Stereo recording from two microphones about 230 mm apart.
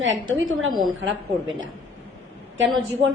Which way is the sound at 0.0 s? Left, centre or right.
Right.